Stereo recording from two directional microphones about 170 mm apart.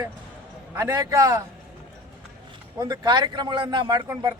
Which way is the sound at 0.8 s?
20° right (ahead or behind).